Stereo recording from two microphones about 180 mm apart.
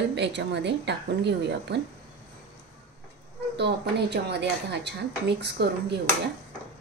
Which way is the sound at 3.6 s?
70° right (ahead or behind).